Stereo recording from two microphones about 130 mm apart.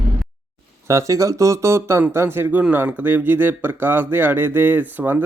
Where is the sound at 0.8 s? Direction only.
25° right (ahead or behind).